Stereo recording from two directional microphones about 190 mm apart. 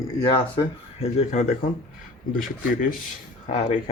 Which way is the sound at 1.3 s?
40° left (ahead or behind).